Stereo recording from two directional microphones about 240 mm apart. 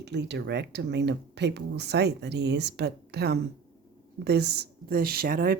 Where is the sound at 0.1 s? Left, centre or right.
Right.